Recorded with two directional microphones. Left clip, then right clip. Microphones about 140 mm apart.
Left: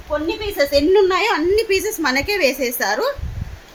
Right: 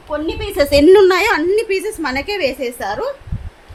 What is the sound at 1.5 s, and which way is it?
A woman's voice, 5° right (ahead or behind).